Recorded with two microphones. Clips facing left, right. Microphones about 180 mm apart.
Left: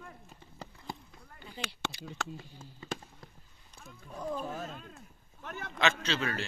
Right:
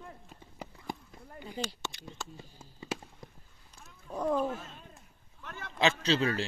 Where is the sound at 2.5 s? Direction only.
10° right (ahead or behind).